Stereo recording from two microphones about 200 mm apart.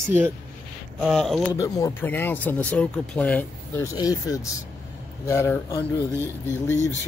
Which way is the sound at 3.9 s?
20° left (ahead or behind).